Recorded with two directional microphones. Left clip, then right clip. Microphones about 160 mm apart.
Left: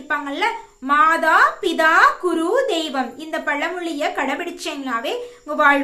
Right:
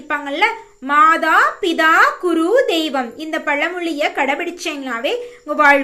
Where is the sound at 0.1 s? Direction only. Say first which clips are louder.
Right 4 dB; 20° right (ahead or behind).